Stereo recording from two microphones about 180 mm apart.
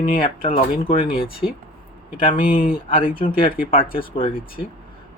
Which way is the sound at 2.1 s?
30° left (ahead or behind).